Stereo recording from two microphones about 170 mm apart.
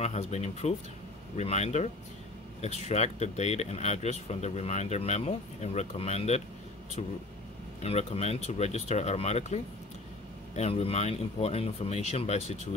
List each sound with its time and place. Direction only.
0.0 s speech: 40° left (ahead or behind)